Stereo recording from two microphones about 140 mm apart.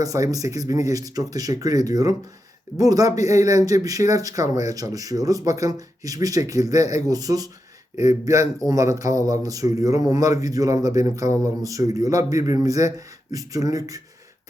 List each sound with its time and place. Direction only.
0.0 s speech: 25° right (ahead or behind)